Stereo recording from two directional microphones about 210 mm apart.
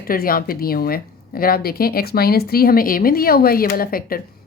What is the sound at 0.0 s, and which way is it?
A woman's voice, 45° left (ahead or behind).